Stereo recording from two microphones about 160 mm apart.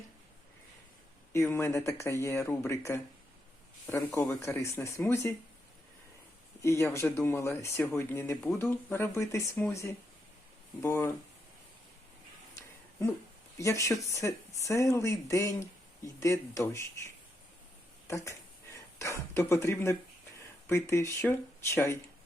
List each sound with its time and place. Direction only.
1.3 s speech: 15° left (ahead or behind)
6.6 s speech: 20° left (ahead or behind)
13.6 s speech: 20° left (ahead or behind)
18.9 s speech: 15° left (ahead or behind)